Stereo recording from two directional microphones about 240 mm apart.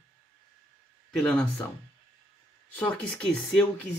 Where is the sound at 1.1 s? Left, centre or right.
Centre.